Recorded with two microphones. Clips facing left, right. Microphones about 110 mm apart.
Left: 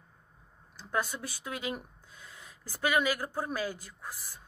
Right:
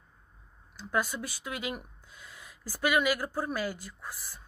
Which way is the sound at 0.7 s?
25° left (ahead or behind).